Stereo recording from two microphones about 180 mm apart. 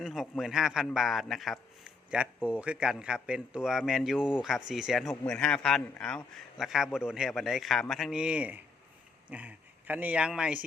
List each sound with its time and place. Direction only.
0.0 s speech: centre (ahead or behind)